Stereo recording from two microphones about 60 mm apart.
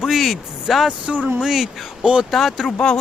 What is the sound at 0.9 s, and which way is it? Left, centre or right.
Speech, centre.